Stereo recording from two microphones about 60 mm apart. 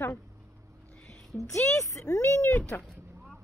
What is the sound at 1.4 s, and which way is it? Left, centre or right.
Speech, left.